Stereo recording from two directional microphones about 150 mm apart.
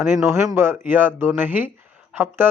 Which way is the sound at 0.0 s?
15° right (ahead or behind).